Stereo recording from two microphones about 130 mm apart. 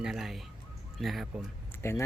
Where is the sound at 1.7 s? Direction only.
20° left (ahead or behind).